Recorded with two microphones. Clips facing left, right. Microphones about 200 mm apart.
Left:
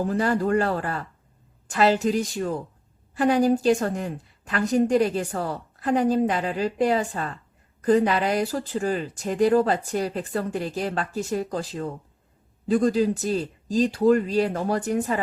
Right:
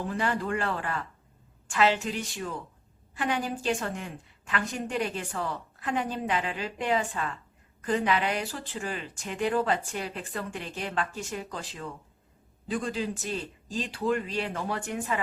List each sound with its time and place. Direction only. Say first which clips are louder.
0.0 s a woman's voice: left 7 dB; 40° left (ahead or behind)